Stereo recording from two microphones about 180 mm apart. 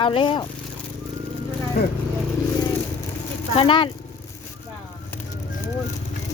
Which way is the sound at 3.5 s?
30° left (ahead or behind).